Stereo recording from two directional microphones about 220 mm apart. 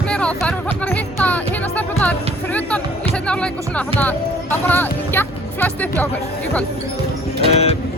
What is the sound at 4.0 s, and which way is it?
Speech, 10° left (ahead or behind).